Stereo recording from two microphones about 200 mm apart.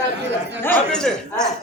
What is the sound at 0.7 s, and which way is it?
Speech, 5° left (ahead or behind).